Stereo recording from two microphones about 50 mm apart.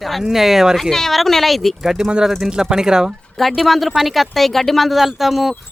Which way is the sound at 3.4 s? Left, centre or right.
Centre.